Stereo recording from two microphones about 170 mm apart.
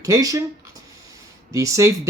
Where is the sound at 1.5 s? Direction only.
20° right (ahead or behind).